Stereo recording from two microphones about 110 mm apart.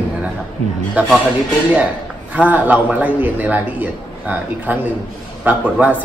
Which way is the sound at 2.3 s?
15° right (ahead or behind).